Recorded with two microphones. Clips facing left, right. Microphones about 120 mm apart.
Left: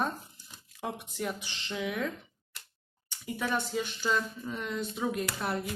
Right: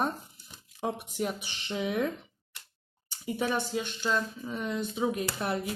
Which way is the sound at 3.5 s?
Centre (ahead or behind).